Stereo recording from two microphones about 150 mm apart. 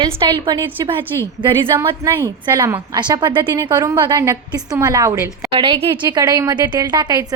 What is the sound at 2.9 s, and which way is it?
A woman's voice, 30° right (ahead or behind).